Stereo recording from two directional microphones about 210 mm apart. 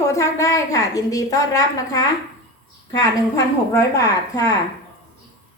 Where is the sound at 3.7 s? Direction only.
15° left (ahead or behind).